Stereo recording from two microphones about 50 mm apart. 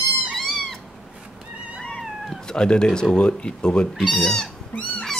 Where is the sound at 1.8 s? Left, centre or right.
Centre.